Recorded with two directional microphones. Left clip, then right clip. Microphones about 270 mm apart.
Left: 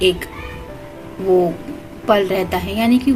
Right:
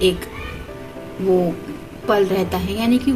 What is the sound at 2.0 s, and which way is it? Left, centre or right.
Speech, left.